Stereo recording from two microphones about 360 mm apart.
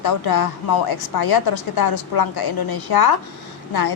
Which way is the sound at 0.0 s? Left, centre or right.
Left.